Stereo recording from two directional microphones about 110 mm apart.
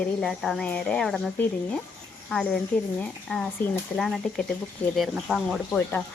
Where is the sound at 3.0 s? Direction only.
5° left (ahead or behind).